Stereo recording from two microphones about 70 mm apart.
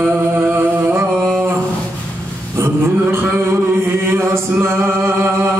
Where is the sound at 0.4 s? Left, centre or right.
Right.